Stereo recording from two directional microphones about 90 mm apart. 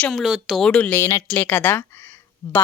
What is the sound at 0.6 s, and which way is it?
Speech, 15° left (ahead or behind).